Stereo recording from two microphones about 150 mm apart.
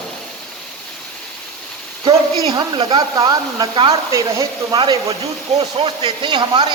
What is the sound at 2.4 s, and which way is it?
Speech, 25° right (ahead or behind).